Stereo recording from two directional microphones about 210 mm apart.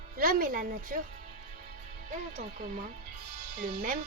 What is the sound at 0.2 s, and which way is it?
Speech, 45° right (ahead or behind).